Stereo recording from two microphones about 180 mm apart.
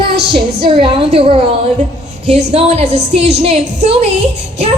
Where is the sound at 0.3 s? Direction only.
30° right (ahead or behind).